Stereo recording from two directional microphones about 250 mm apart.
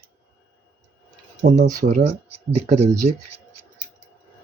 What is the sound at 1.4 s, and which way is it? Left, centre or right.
Speech, right.